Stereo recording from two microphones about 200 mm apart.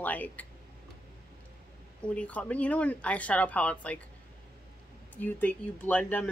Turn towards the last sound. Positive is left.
turn(degrees=5)  # may be behind; listen again after turning